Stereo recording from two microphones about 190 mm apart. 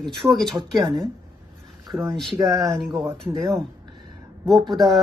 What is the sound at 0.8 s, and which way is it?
Speech, 25° right (ahead or behind).